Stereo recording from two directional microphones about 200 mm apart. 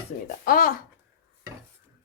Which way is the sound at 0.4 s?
45° left (ahead or behind).